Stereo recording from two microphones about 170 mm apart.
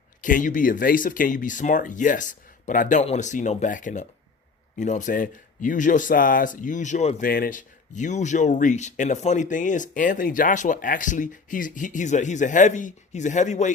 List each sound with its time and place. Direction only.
0.2 s speech: 50° left (ahead or behind)
7.3 s speech: 60° left (ahead or behind); by 13.7 s 45° left (ahead or behind)